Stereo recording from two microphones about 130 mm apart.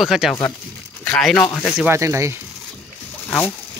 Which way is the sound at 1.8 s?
20° right (ahead or behind).